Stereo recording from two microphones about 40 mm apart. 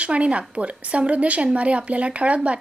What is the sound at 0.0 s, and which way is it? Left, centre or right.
A woman's voice, right.